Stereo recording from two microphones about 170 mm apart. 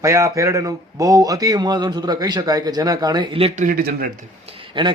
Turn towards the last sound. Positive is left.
turn(degrees=-30)  # may be behind; listen again after turning